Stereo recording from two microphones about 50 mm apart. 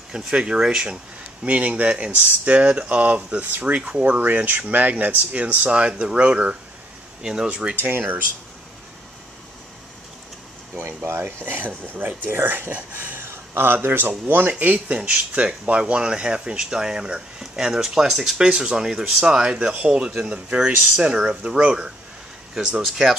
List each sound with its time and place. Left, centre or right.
0.1 s speech: centre
1.4 s speech: right
11.1 s speech: right
13.2 s a sound: right
13.8 s speech: right; by 23.1 s centre